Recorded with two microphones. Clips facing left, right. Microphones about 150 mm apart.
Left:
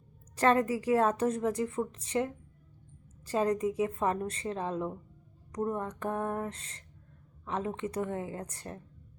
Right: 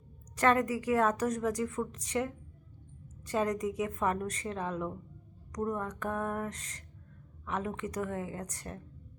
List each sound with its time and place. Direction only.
0.3 s a woman's voice: 30° left (ahead or behind)